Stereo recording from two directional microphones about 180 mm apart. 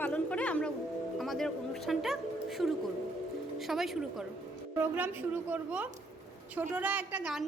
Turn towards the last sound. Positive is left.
turn(degrees=-5)  # may be behind; listen again after turning